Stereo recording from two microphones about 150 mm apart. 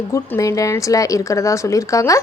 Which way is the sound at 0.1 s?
20° left (ahead or behind).